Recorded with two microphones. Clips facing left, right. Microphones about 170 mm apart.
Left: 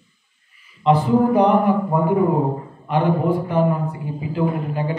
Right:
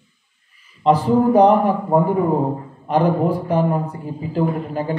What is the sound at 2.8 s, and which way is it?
Speech, 40° right (ahead or behind).